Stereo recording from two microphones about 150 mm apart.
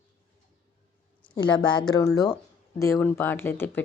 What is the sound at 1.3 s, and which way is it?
Speech, 30° left (ahead or behind).